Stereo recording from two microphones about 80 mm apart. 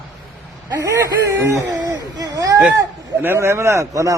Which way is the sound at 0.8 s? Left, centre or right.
Right.